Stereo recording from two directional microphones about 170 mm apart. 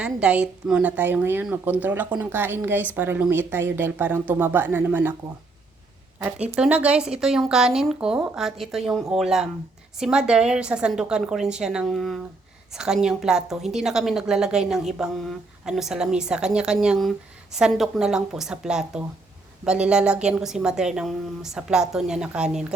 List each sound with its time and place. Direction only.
0.0 s a woman's voice: 5° right (ahead or behind)
6.1 s a woman's voice: 5° right (ahead or behind)